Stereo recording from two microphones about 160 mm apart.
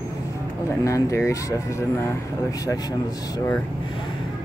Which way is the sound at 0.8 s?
20° left (ahead or behind).